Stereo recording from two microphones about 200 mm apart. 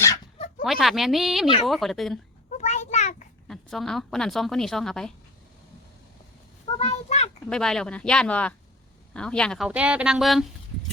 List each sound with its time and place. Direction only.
0.6 s a woman's voice: centre (ahead or behind)
2.5 s a sound: 35° left (ahead or behind)
3.4 s a woman's voice: centre (ahead or behind)
6.7 s a child's voice: 30° left (ahead or behind)
7.5 s a woman's voice: 5° left (ahead or behind)